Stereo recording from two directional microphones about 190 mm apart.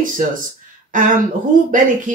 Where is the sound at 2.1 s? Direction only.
40° right (ahead or behind).